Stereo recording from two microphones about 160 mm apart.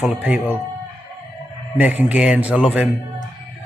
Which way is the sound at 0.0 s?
10° right (ahead or behind).